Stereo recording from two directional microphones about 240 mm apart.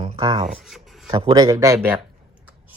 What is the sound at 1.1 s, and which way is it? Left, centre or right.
Speech, centre.